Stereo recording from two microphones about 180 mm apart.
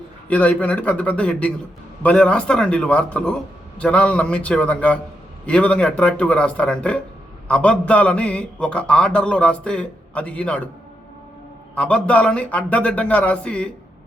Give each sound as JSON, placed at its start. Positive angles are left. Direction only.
{"t": 0.3, "sound": "a man's voice", "side_deg": 10}
{"t": 11.7, "sound": "a man's voice", "side_deg": 5}